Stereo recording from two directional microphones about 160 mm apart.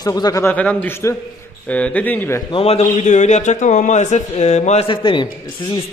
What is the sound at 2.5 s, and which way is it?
Speech, 35° left (ahead or behind).